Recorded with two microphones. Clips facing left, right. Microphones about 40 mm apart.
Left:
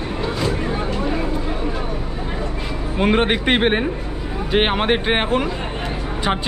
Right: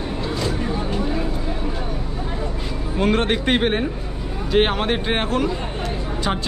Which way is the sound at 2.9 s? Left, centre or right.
Left.